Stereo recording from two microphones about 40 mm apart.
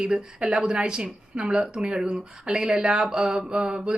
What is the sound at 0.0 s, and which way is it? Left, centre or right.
Speech, right.